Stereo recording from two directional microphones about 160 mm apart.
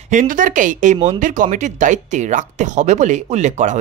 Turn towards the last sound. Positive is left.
turn(degrees=-45)  # may be behind; listen again after turning